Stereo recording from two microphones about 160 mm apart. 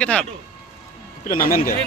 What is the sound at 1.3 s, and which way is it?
Speech, 60° left (ahead or behind).